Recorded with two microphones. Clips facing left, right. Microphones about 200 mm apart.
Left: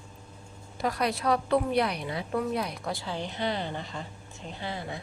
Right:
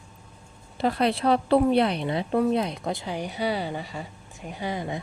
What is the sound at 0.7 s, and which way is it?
A woman's voice, 30° right (ahead or behind).